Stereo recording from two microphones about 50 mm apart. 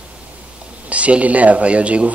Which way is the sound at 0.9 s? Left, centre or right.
Right.